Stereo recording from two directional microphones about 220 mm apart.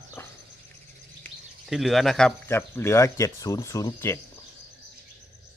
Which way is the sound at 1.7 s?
Centre (ahead or behind).